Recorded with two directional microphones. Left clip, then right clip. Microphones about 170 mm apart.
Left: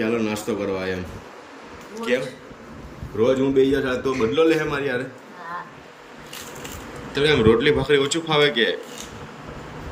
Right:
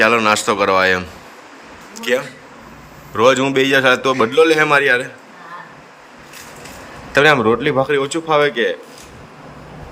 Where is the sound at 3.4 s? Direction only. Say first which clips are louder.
Right 3 dB; 50° right (ahead or behind).